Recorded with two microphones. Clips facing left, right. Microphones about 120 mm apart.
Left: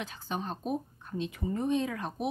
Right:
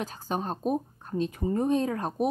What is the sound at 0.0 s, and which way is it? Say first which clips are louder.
Speech: right 5 dB; 40° right (ahead or behind).